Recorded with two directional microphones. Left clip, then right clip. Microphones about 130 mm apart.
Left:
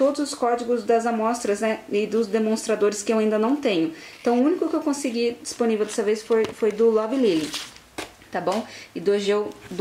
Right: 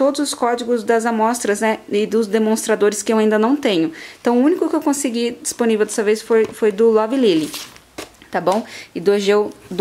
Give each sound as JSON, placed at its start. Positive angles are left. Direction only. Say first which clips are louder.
{"t": 0.0, "sound": "speech", "louder": "right 4 dB", "side_deg": -40}